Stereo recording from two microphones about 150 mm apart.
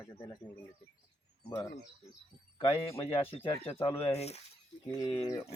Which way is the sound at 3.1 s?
40° left (ahead or behind).